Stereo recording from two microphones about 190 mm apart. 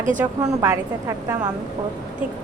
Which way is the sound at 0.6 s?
15° right (ahead or behind).